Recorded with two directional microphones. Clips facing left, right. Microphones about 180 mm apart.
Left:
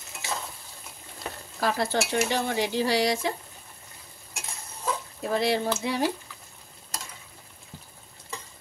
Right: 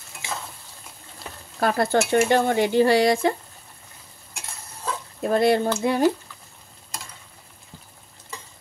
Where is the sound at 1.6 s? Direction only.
55° right (ahead or behind).